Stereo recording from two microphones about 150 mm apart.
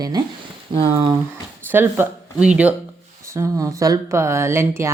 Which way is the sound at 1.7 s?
15° right (ahead or behind).